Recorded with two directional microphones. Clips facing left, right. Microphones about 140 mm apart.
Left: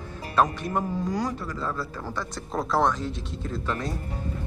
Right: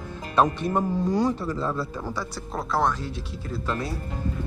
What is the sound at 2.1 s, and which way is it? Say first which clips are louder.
Speech: even; 5° right (ahead or behind).